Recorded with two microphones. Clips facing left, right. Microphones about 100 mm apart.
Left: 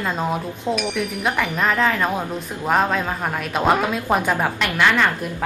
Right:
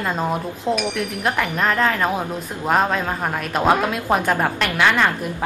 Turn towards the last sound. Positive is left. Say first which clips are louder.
# even
turn(degrees=-5)  # may be behind; listen again after turning